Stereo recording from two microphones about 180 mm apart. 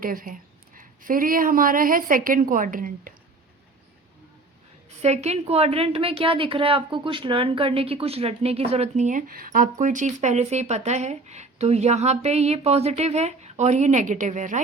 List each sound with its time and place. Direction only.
0.0 s a woman's voice: 50° right (ahead or behind)
5.0 s a woman's voice: 35° right (ahead or behind)